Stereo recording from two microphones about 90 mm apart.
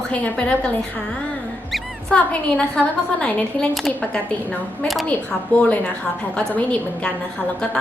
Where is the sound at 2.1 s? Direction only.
10° left (ahead or behind).